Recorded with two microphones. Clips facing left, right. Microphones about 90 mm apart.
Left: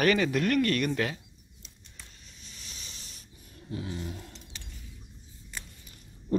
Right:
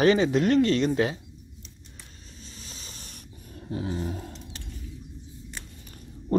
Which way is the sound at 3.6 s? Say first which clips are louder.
Right 6 dB; 35° right (ahead or behind).